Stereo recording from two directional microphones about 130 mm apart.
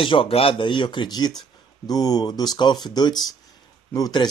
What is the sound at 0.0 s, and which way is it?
Speech, 45° left (ahead or behind).